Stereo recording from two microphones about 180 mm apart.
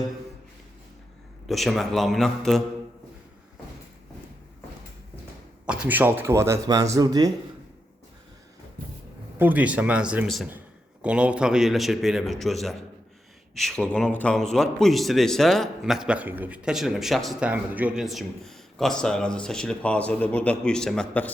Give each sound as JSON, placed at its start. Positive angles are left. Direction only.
{"t": 1.5, "sound": "speech", "side_deg": 0}
{"t": 5.6, "sound": "a man's voice", "side_deg": -5}
{"t": 9.4, "sound": "a man's voice", "side_deg": -10}